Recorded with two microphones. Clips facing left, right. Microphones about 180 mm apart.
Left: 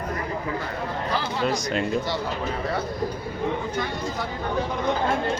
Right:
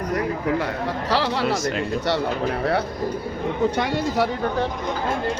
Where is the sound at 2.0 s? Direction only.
65° right (ahead or behind).